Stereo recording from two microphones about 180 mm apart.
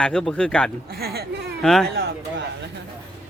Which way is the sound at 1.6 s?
Centre (ahead or behind).